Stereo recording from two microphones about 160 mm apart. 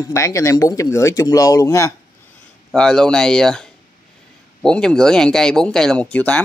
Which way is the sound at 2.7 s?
5° left (ahead or behind).